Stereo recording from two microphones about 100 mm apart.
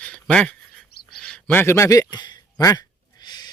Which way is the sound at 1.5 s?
25° left (ahead or behind).